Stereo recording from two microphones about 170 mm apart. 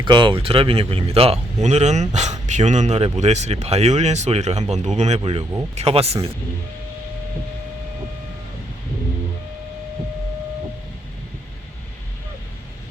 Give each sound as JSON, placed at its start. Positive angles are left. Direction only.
{"t": 0.0, "sound": "speech", "side_deg": -30}